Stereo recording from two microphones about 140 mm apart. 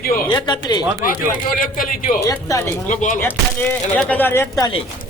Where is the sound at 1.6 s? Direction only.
90° left.